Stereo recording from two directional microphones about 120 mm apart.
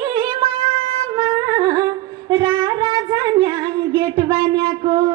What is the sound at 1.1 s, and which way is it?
Music, 35° right (ahead or behind).